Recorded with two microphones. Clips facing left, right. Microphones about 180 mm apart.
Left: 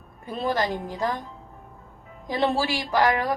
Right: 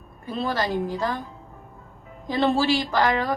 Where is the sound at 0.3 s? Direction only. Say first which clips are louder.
Right 1 dB; 20° left (ahead or behind).